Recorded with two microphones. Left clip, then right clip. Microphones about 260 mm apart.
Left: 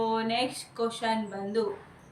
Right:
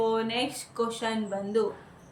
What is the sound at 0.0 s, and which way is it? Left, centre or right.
Speech, centre.